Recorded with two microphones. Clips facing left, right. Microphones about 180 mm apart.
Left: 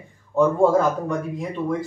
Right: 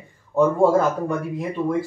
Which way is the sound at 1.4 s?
5° right (ahead or behind).